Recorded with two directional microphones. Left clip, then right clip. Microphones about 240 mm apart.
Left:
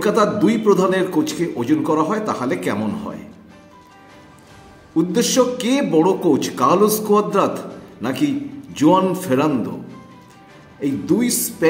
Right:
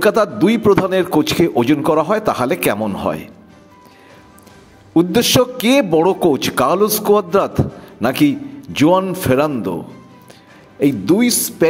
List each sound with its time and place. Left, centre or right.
0.0 s a man's voice: right
4.9 s a man's voice: right
10.8 s a man's voice: right